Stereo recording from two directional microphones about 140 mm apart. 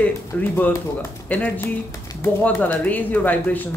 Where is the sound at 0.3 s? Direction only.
15° left (ahead or behind).